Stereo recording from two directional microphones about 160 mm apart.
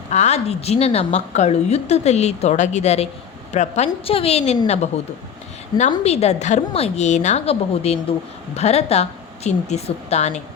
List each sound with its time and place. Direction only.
0.1 s a woman's voice: 45° left (ahead or behind)
6.0 s a woman's voice: 40° left (ahead or behind)